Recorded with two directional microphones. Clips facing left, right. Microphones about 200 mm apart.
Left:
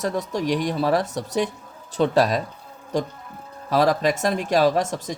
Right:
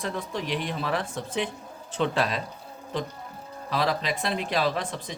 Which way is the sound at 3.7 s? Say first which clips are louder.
Left 8 dB; 45° left (ahead or behind).